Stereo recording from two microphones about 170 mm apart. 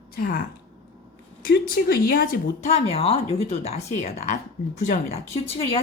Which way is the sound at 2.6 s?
40° left (ahead or behind).